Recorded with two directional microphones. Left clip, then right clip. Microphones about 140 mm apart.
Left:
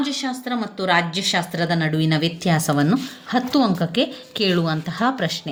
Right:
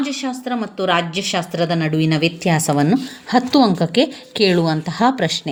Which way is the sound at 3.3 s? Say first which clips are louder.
Right 5 dB; 40° right (ahead or behind).